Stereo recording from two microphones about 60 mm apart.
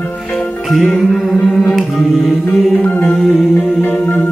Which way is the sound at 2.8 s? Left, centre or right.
Left.